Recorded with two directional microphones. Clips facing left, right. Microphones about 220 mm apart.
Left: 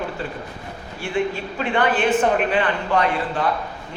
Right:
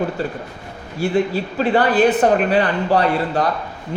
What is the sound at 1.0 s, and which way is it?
A man's voice, 40° right (ahead or behind).